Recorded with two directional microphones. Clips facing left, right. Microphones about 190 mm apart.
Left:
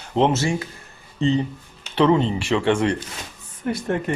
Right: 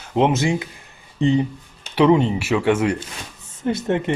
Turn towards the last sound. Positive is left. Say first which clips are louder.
# right 3 dB
turn(degrees=-20)  # may be behind; listen again after turning